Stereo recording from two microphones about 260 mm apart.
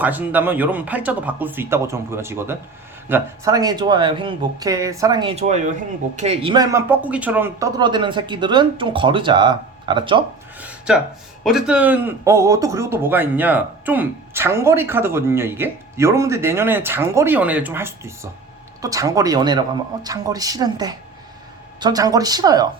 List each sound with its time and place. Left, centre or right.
0.0 s speech: centre
10.6 s a sound: centre
11.4 s speech: centre